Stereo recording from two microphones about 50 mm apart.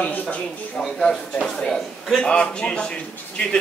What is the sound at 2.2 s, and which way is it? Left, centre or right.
A man's voice, centre.